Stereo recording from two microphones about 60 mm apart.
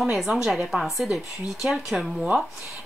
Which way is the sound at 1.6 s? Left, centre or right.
Centre.